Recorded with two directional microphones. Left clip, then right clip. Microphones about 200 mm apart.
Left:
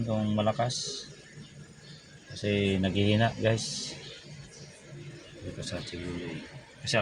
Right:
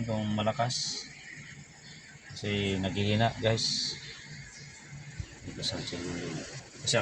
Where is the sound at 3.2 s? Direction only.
25° left (ahead or behind).